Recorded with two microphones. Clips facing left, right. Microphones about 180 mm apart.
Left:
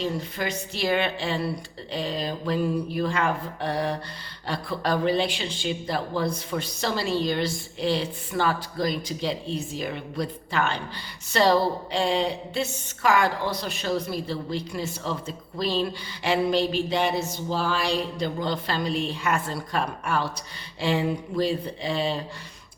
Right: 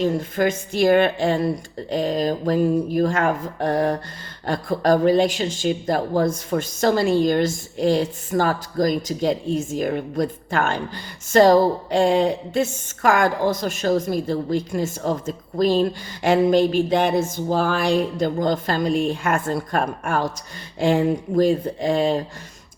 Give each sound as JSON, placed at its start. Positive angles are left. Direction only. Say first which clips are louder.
{"t": 0.0, "sound": "speech", "louder": "right 8 dB", "side_deg": -50}